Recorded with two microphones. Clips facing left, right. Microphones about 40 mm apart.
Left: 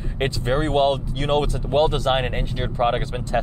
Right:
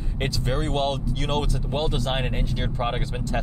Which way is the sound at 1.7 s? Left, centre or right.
Left.